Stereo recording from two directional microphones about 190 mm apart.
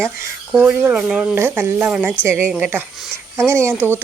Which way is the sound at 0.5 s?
5° right (ahead or behind).